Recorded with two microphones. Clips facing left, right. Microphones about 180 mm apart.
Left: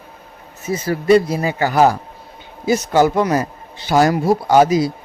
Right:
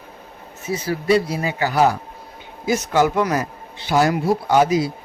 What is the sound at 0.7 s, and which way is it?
Speech, 45° left (ahead or behind).